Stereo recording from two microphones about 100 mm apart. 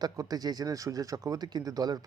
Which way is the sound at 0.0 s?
40° right (ahead or behind).